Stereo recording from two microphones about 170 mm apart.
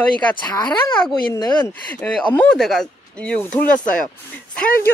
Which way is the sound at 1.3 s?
15° left (ahead or behind).